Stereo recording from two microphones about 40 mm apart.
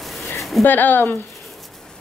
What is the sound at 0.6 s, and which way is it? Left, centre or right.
Speech, left.